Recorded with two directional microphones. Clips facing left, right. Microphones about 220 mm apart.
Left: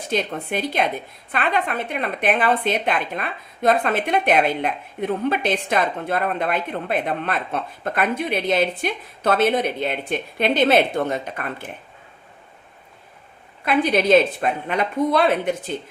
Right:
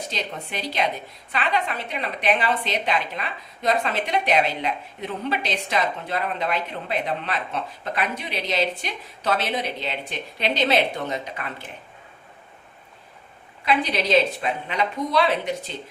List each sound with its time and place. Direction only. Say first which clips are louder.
0.0 s a woman's voice: left 7 dB; 55° left (ahead or behind)
13.7 s a woman's voice: left 5 dB; 50° left (ahead or behind)